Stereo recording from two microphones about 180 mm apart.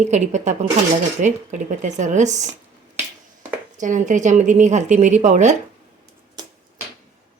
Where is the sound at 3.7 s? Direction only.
45° right (ahead or behind).